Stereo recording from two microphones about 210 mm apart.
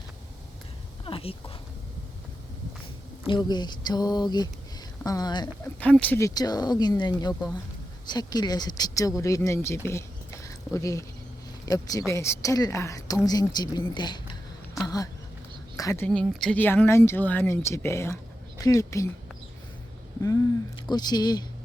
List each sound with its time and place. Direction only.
1.0 s speech: 25° left (ahead or behind)
3.2 s speech: 20° left (ahead or behind)
5.8 s a woman's voice: 5° left (ahead or behind)
16.0 s a woman's voice: 5° left (ahead or behind)
20.9 s speech: 20° left (ahead or behind)